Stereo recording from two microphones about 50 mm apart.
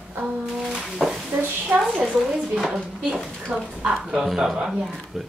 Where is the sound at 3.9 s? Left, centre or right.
Centre.